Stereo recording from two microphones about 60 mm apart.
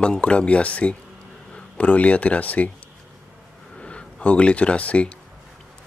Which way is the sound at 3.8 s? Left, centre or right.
Centre.